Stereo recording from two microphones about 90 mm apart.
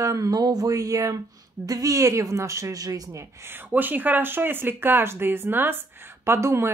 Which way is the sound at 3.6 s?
20° right (ahead or behind).